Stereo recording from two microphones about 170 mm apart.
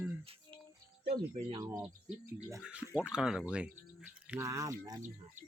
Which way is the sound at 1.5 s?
20° right (ahead or behind).